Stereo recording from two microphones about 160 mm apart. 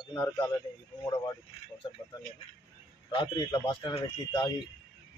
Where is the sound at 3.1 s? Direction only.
30° left (ahead or behind).